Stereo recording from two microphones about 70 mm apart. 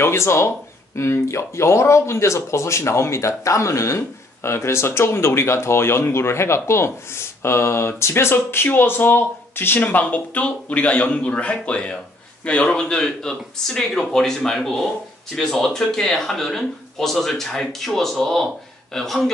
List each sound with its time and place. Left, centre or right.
0.0 s speech: left; by 19.3 s centre